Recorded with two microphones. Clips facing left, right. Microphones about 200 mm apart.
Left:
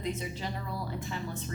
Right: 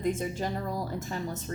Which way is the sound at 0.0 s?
50° right (ahead or behind).